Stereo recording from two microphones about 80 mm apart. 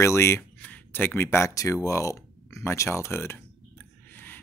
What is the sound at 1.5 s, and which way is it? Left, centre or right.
Speech, left.